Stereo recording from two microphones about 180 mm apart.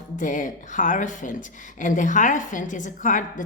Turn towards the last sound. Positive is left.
turn(degrees=45)  # may be behind; listen again after turning